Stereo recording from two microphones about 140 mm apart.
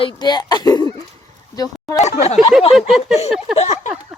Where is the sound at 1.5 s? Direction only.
25° left (ahead or behind).